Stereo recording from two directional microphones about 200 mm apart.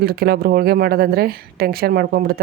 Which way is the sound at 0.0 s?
50° right (ahead or behind).